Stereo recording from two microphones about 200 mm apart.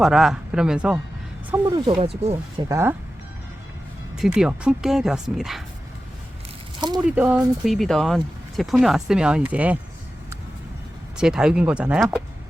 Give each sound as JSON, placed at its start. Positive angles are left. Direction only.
{"t": 0.0, "sound": "speech", "side_deg": 0}
{"t": 2.0, "sound": "speech", "side_deg": -30}
{"t": 2.3, "sound": "speech", "side_deg": -15}
{"t": 4.2, "sound": "speech", "side_deg": -5}
{"t": 6.8, "sound": "speech", "side_deg": -20}
{"t": 7.2, "sound": "speech", "side_deg": -5}
{"t": 11.2, "sound": "speech", "side_deg": -5}